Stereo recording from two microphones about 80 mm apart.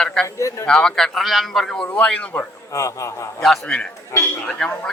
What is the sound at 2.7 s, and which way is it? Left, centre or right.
Speech, left.